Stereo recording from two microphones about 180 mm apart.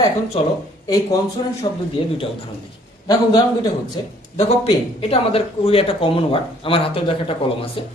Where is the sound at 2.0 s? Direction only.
30° left (ahead or behind).